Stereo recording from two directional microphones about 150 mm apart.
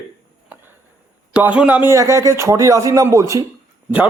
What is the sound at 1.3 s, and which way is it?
A man's voice, 10° right (ahead or behind).